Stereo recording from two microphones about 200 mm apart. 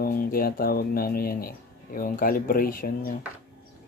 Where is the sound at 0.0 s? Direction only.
45° left (ahead or behind).